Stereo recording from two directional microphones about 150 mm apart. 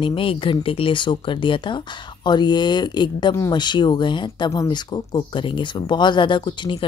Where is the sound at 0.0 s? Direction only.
35° left (ahead or behind).